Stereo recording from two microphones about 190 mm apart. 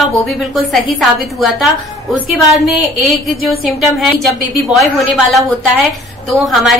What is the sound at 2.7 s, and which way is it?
A woman's voice, centre (ahead or behind).